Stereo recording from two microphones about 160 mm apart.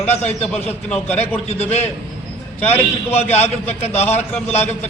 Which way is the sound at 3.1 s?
40° left (ahead or behind).